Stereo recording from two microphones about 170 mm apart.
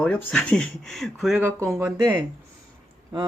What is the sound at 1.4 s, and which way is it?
Speech, 15° right (ahead or behind).